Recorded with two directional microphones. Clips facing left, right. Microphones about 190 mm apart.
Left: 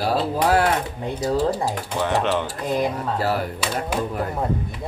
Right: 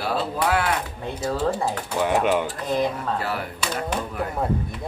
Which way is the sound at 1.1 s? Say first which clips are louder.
Left 3 dB; 40° left (ahead or behind).